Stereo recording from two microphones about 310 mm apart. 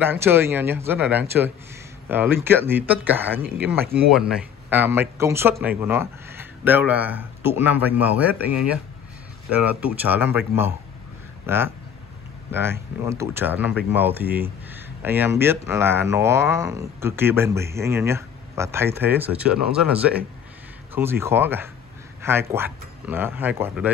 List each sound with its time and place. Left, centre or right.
0.0 s speech: centre